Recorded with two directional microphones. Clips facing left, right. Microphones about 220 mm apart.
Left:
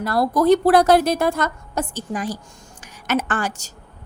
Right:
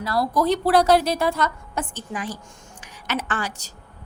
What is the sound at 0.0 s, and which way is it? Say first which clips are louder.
A woman's voice: left 4 dB; 55° left (ahead or behind).